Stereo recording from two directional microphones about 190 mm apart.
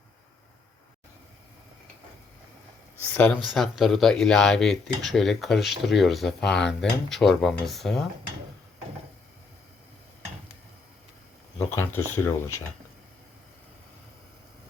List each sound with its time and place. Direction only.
3.4 s speech: centre (ahead or behind)
11.7 s speech: 10° left (ahead or behind)